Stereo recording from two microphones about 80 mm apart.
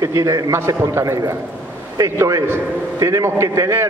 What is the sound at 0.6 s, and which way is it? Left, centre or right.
A man's voice, right.